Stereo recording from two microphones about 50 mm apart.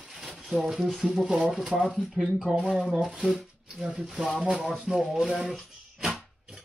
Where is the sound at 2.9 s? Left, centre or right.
Centre.